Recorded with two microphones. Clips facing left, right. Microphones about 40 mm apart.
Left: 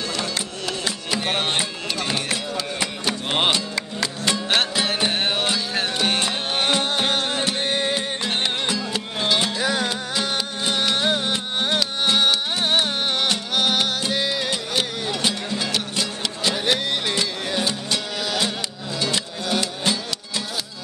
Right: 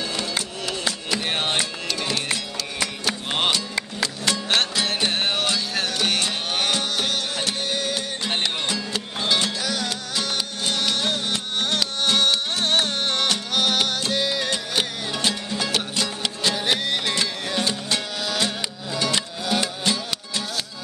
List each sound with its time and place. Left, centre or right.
0.3 s music: centre; by 8.0 s left
8.4 s music: centre
9.6 s music: left; by 19.6 s centre